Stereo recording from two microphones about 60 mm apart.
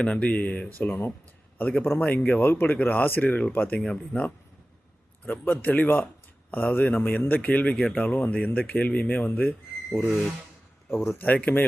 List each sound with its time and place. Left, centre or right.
0.0 s speech: left
0.8 s speech: left
3.8 s speech: centre
5.2 s speech: left
11.1 s speech: left